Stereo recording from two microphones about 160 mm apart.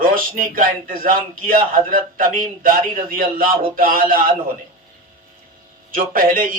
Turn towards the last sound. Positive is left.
turn(degrees=-60)  # may be behind; listen again after turning